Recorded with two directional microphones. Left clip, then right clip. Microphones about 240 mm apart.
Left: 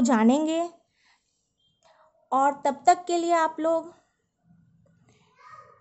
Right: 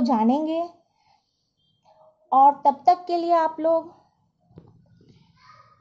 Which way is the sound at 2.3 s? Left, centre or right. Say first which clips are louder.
Right 7 dB; left.